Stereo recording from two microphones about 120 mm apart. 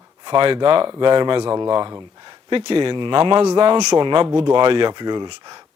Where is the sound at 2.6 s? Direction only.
50° right (ahead or behind).